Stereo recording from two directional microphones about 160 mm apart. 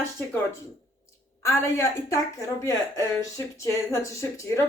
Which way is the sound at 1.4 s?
20° left (ahead or behind).